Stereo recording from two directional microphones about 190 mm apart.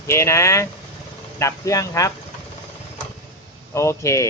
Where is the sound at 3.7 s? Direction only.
15° left (ahead or behind).